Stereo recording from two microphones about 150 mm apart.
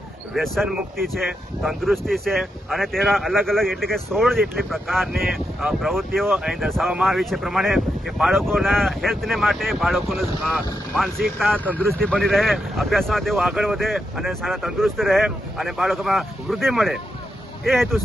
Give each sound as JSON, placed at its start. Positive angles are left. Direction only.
{"t": 0.3, "sound": "speech", "side_deg": 0}